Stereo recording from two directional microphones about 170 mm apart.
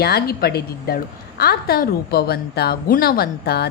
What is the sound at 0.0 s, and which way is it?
A woman's voice, 65° left (ahead or behind).